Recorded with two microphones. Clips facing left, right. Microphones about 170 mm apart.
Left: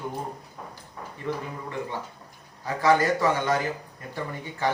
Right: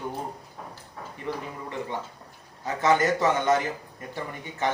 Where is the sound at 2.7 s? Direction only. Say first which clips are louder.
Left 1 dB; 20° right (ahead or behind).